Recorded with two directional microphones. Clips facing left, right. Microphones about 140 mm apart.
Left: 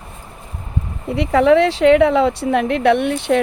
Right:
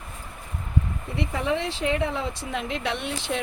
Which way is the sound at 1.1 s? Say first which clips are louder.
Left 14 dB; 75° left (ahead or behind).